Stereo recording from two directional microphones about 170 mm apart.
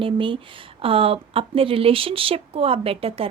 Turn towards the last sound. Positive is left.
turn(degrees=-35)  # may be behind; listen again after turning